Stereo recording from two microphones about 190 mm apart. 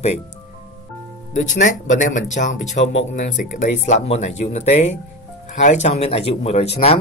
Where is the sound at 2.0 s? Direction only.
40° left (ahead or behind).